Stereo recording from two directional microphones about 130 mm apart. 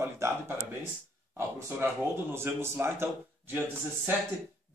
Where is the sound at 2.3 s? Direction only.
20° right (ahead or behind).